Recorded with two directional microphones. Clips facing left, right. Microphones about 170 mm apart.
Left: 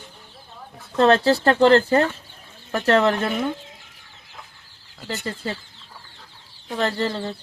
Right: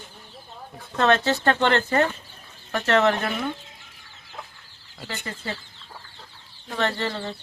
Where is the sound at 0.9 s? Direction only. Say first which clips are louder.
Left 4 dB; 35° left (ahead or behind).